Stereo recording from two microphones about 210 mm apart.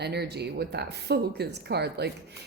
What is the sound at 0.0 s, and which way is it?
A woman's voice, 50° right (ahead or behind).